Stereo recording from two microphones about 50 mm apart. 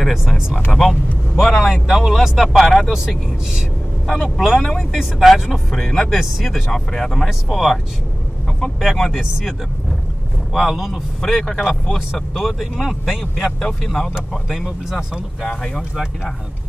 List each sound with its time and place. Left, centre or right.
0.0 s speech: centre
4.1 s speech: centre
6.7 s speech: centre
7.2 s speech: centre
8.8 s speech: centre
10.5 s speech: centre
12.1 s speech: centre
13.6 s speech: centre